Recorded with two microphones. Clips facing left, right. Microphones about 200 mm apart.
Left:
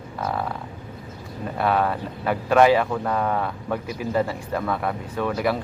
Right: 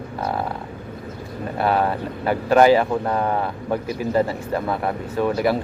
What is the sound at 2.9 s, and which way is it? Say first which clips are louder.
Speech: right 2 dB; 25° right (ahead or behind).